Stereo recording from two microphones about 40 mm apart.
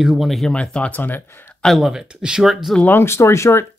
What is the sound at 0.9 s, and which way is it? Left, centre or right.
Speech, left.